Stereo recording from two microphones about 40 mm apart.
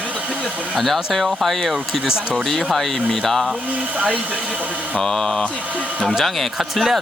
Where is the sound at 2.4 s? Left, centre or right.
Centre.